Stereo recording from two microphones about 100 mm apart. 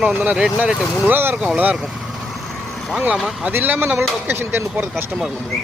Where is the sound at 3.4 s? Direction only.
20° right (ahead or behind).